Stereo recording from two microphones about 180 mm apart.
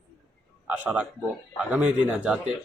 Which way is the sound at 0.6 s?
10° right (ahead or behind).